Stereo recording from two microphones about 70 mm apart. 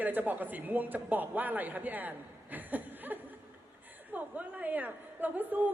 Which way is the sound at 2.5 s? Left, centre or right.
Right.